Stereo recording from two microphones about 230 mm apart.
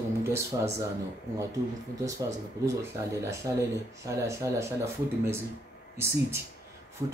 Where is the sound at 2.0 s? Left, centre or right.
Centre.